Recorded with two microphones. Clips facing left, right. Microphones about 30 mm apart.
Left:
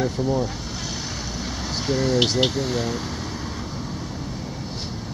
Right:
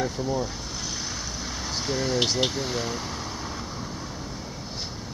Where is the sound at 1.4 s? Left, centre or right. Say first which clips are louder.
Left 3 dB; centre.